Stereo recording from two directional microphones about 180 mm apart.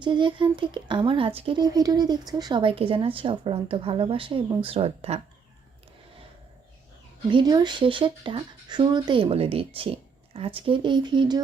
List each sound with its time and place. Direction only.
0.0 s speech: 25° right (ahead or behind)
7.3 s speech: 25° right (ahead or behind)